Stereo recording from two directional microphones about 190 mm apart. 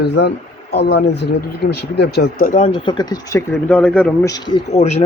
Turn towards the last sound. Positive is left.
turn(degrees=30)  # may be behind; listen again after turning